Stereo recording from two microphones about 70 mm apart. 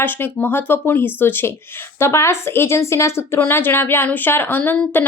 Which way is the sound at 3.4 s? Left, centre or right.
Left.